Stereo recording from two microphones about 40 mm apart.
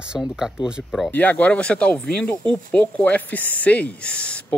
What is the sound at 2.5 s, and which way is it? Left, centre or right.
Speech, left.